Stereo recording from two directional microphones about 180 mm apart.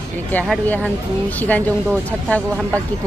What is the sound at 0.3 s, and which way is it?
Speech, 10° left (ahead or behind).